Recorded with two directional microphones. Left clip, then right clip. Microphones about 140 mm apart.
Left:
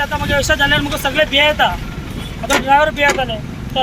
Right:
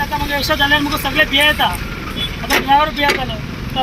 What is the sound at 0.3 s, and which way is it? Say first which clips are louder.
Speech: left 1 dB; centre (ahead or behind).